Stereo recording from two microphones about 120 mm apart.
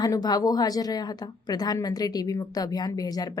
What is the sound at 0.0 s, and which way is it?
A woman's voice, 30° left (ahead or behind).